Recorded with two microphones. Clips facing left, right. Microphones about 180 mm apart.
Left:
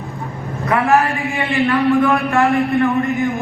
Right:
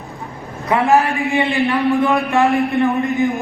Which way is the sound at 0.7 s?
20° right (ahead or behind).